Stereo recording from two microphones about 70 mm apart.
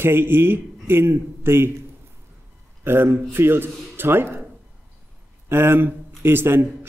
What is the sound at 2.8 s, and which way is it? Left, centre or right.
Speech, right.